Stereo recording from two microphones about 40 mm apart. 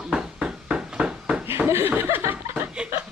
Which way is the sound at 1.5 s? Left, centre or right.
Right.